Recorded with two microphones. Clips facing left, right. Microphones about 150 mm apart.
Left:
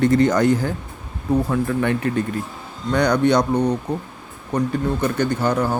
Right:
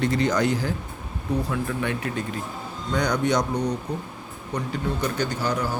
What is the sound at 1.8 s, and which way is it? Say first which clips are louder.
Speech: left 7 dB; 55° left (ahead or behind).